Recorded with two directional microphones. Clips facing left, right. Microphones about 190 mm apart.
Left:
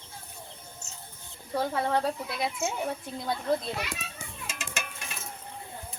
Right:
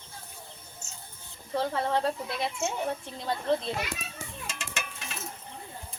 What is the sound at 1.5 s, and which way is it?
Speech, centre (ahead or behind).